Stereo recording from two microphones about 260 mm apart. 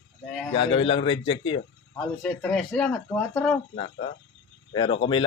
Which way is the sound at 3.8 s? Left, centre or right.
Left.